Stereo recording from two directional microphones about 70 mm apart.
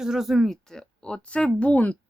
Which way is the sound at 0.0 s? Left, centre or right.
Centre.